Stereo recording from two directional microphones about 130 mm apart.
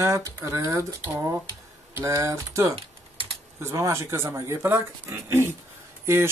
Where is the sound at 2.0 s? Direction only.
25° right (ahead or behind).